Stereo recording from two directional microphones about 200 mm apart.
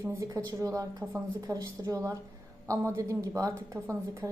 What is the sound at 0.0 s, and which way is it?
Speech, 15° right (ahead or behind).